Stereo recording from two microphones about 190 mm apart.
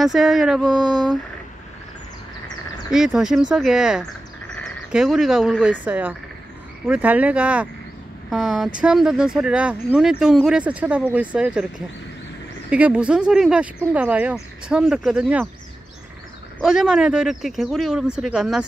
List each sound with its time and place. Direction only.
0.0 s speech: centre (ahead or behind)
0.7 s a sound: 20° right (ahead or behind)
2.9 s speech: centre (ahead or behind)
12.6 s speech: 5° right (ahead or behind)
16.6 s speech: 5° right (ahead or behind)